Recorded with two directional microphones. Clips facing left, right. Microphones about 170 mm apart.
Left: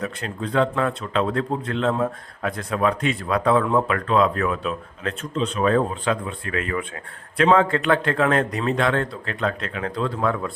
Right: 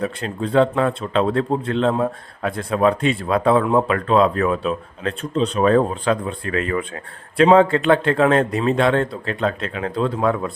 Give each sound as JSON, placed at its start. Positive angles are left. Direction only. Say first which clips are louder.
{"t": 0.0, "sound": "speech", "louder": "right 4 dB", "side_deg": -30}